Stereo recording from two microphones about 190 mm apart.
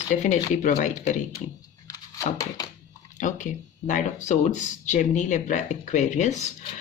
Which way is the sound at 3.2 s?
40° left (ahead or behind).